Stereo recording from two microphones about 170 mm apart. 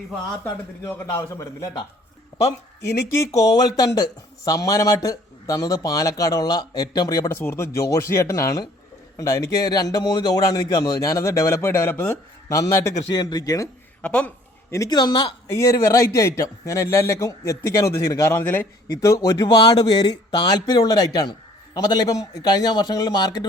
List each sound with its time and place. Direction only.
0.9 s speech: 10° left (ahead or behind)
2.8 s a man's voice: 15° left (ahead or behind)
14.0 s a man's voice: 5° left (ahead or behind); by 23.5 s 25° left (ahead or behind)